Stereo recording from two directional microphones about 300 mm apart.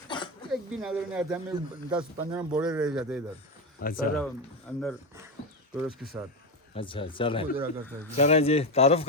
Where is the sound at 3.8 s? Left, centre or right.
Left.